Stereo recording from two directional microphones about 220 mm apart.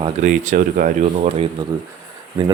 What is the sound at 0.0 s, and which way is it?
Speech, 35° right (ahead or behind).